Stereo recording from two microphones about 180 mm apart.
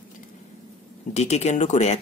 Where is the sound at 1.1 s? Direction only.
40° left (ahead or behind).